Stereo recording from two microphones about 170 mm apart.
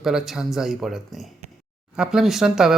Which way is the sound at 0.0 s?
5° right (ahead or behind).